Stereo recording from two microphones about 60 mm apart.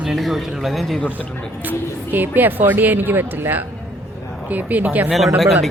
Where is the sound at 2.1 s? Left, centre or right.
Right.